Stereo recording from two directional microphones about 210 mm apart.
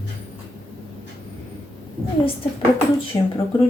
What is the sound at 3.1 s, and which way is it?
Speech, 20° left (ahead or behind).